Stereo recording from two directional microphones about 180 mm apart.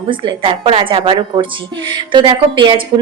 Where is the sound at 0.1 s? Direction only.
30° right (ahead or behind).